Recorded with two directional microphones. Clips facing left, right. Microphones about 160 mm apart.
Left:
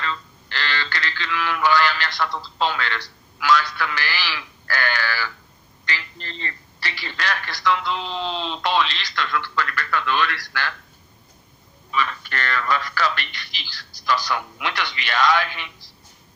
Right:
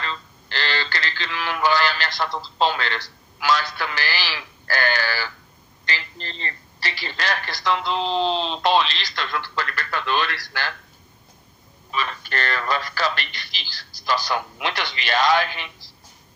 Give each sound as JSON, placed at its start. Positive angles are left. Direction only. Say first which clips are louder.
{"t": 0.0, "sound": "a woman's voice", "louder": "left 2 dB", "side_deg": -35}
{"t": 11.9, "sound": "a woman's voice", "louder": "left 2 dB", "side_deg": -35}